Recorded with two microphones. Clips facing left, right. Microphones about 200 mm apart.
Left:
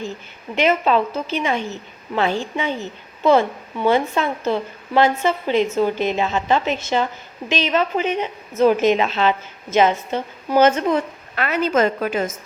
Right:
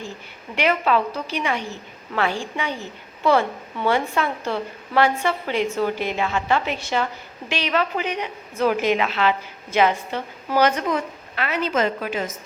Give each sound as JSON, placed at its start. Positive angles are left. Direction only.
{"t": 0.5, "sound": "a woman's voice", "side_deg": 25}
{"t": 11.3, "sound": "a woman's voice", "side_deg": 50}